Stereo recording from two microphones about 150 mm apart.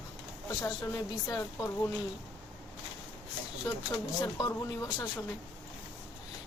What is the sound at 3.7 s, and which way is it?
Speech, 20° left (ahead or behind).